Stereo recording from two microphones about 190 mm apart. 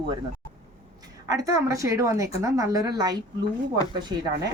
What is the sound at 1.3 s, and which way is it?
A woman's voice, 15° right (ahead or behind).